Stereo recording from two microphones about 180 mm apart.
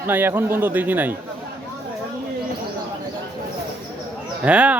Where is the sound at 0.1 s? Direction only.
10° right (ahead or behind).